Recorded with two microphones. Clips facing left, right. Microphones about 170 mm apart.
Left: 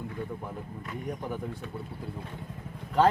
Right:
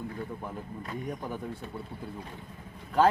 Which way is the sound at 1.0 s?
10° left (ahead or behind).